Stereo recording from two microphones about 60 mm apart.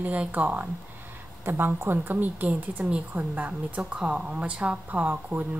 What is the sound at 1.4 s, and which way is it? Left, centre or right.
A woman's voice, right.